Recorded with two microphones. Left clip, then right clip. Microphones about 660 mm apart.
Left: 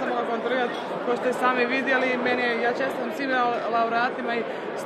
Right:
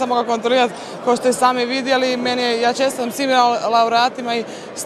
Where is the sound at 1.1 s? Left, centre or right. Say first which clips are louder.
Right 9 dB; right.